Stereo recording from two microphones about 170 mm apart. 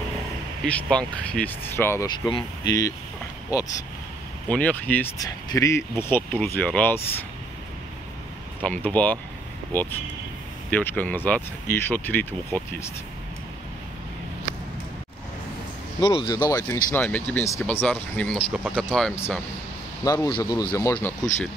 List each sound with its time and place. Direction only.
0.8 s speech: 5° left (ahead or behind)
2.0 s speech: 25° left (ahead or behind)
4.5 s speech: 10° left (ahead or behind)
5.2 s speech: 20° left (ahead or behind)
8.6 s speech: 10° left (ahead or behind)
16.0 s speech: 25° left (ahead or behind)
17.0 s speech: 10° left (ahead or behind)
18.5 s speech: 10° right (ahead or behind)
18.9 s speech: 5° left (ahead or behind)
20.1 s speech: 25° left (ahead or behind)